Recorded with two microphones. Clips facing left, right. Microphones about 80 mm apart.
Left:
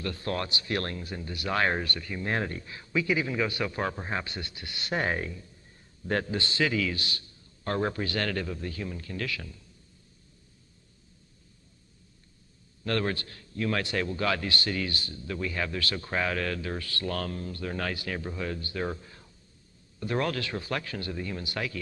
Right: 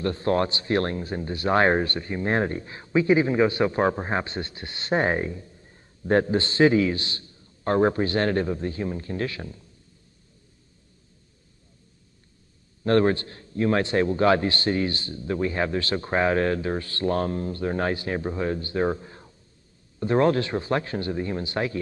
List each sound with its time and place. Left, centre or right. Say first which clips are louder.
0.0 s speech: right 9 dB; right
12.8 s speech: right 9 dB; right